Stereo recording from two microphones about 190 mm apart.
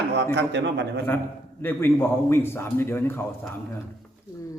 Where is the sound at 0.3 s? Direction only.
65° right (ahead or behind).